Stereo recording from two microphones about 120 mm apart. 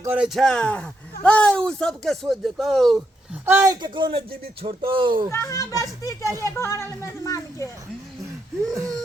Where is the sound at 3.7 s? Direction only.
40° right (ahead or behind).